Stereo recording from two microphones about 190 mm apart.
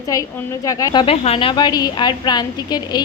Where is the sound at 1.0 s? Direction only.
30° left (ahead or behind).